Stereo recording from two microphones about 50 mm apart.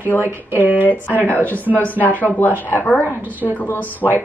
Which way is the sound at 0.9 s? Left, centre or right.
Left.